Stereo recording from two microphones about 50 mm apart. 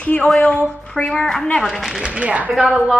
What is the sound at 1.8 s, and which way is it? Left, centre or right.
Speech, centre.